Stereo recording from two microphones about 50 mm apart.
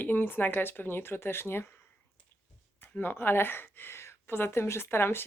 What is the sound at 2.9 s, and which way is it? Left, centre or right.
Speech, left.